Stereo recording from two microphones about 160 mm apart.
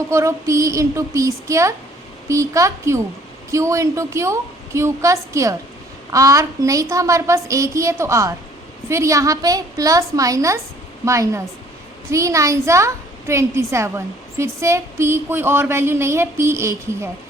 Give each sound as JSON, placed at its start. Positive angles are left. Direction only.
{"t": 0.1, "sound": "a woman's voice", "side_deg": -20}